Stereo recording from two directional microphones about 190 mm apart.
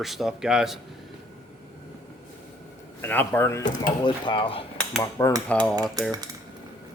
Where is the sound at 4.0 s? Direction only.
25° left (ahead or behind).